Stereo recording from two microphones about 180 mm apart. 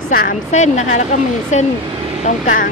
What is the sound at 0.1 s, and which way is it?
Speech, 45° left (ahead or behind).